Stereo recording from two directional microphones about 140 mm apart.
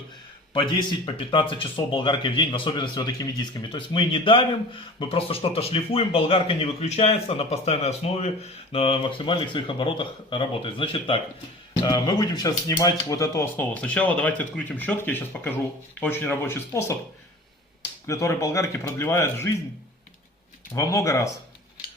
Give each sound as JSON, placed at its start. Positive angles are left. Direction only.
{"t": 0.5, "sound": "speech", "side_deg": 35}
{"t": 11.8, "sound": "speech", "side_deg": 25}
{"t": 18.0, "sound": "speech", "side_deg": 20}
{"t": 20.7, "sound": "speech", "side_deg": 25}